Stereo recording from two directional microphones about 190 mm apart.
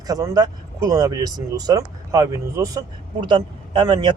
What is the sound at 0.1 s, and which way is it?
A man's voice, 20° right (ahead or behind).